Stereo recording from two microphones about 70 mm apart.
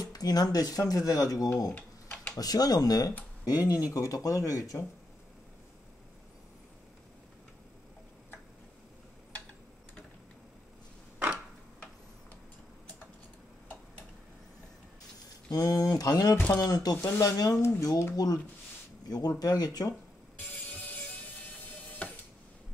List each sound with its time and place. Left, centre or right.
0.1 s speech: left
1.8 s a sound: left
2.3 s speech: left
3.4 s speech: left
15.5 s speech: left
17.0 s speech: left
18.1 s speech: left
20.8 s music: left